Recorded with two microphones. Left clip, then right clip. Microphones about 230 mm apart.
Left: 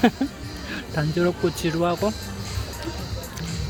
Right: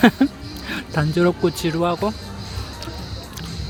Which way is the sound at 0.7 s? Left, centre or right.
Centre.